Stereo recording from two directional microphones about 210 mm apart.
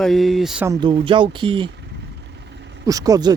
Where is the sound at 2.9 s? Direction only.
15° right (ahead or behind).